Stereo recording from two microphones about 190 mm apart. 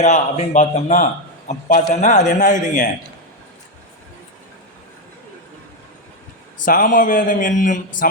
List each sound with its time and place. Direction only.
0.0 s a man's voice: 35° left (ahead or behind)
6.7 s speech: 45° left (ahead or behind)